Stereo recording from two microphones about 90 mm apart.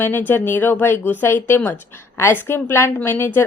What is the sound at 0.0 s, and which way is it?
Speech, 20° left (ahead or behind).